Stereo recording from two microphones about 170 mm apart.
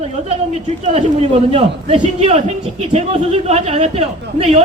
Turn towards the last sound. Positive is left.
turn(degrees=-40)  # may be behind; listen again after turning